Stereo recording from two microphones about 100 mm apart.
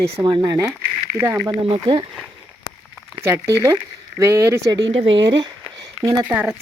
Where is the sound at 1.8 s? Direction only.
50° right (ahead or behind).